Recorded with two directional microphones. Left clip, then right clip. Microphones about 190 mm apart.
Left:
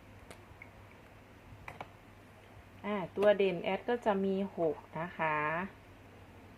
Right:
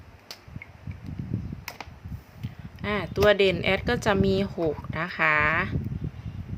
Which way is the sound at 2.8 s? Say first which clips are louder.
Right 7 dB; 40° right (ahead or behind).